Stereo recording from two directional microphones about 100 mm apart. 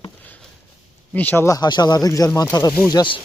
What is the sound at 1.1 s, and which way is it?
Speech, 20° left (ahead or behind).